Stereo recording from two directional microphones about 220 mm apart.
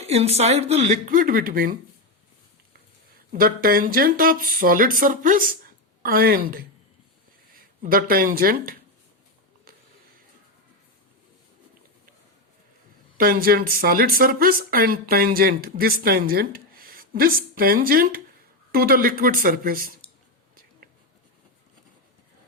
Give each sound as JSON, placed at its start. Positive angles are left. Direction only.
{"t": 0.0, "sound": "speech", "side_deg": -30}
{"t": 3.3, "sound": "speech", "side_deg": -40}
{"t": 13.1, "sound": "speech", "side_deg": -40}